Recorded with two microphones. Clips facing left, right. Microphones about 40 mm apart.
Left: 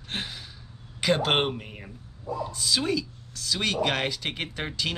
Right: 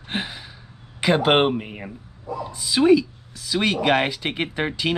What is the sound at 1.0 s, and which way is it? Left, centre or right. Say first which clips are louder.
Speech: right 6 dB; centre.